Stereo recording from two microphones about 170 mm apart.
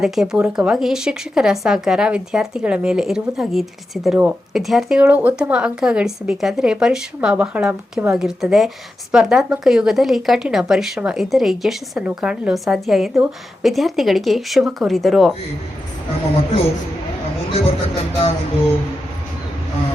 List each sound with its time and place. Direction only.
0.0 s a woman's voice: 5° right (ahead or behind)
17.5 s speech: 35° left (ahead or behind)